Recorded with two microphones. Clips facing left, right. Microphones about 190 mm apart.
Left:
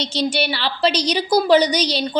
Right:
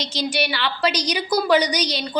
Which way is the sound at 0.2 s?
30° left (ahead or behind).